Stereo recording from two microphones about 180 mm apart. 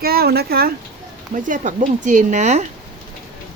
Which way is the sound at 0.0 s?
60° right (ahead or behind).